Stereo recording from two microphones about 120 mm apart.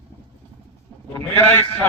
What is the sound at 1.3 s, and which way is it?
Speech, 20° left (ahead or behind).